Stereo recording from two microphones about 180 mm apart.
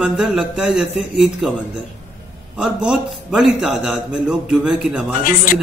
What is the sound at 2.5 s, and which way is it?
A man's voice, 5° right (ahead or behind).